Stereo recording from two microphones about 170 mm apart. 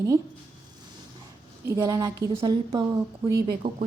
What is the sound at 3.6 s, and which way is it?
Speech, 65° right (ahead or behind).